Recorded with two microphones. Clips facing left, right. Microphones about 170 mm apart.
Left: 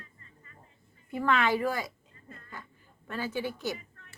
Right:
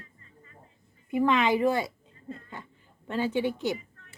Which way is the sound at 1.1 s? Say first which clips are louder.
Right 4 dB; 15° right (ahead or behind).